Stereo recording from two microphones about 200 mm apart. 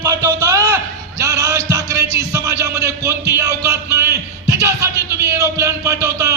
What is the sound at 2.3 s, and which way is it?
A man's voice, 15° right (ahead or behind).